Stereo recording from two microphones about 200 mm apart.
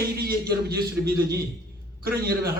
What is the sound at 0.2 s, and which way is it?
A man's voice, 50° right (ahead or behind).